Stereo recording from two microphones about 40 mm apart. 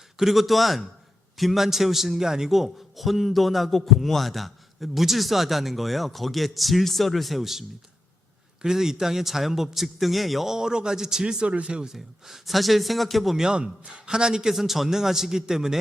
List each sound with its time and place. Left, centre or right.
0.2 s a man's voice: centre
8.6 s a man's voice: centre
11.9 s a man's voice: centre
13.3 s a man's voice: centre
14.5 s a man's voice: centre